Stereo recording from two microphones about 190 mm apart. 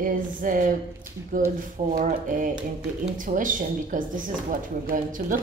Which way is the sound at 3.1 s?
45° right (ahead or behind).